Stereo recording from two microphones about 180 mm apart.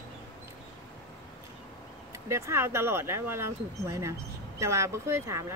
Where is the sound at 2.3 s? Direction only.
15° right (ahead or behind).